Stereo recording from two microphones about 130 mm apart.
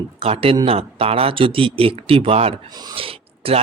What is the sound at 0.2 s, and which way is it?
Speech, 50° right (ahead or behind).